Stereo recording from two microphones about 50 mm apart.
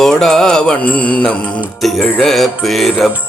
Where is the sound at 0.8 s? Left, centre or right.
Left.